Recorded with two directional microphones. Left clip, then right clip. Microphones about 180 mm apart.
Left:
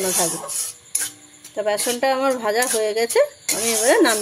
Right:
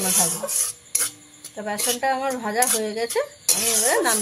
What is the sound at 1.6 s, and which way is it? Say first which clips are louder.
Speech: left 4 dB; 65° left (ahead or behind).